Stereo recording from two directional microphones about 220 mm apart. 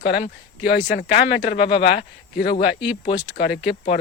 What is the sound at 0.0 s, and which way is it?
Speech, 45° left (ahead or behind).